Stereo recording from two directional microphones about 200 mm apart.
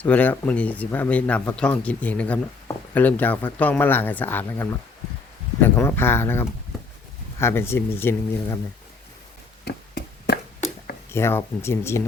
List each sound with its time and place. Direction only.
0.0 s speech: 10° left (ahead or behind)
9.6 s chop: 55° left (ahead or behind)
11.1 s speech: 10° left (ahead or behind)